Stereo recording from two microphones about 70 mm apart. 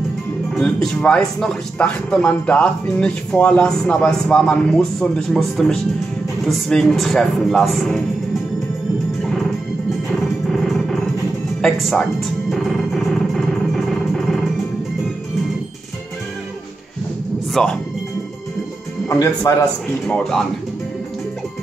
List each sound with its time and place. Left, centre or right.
0.6 s a man's voice: centre
9.2 s music: centre
17.5 s speech: centre
19.0 s speech: left